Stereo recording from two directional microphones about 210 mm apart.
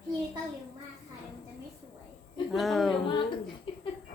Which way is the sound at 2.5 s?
Centre (ahead or behind).